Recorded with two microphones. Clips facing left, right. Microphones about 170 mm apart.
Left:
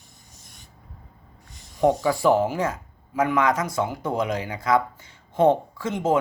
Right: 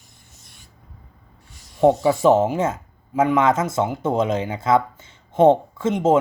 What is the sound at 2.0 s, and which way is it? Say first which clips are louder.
Speech: right 4 dB; 20° right (ahead or behind).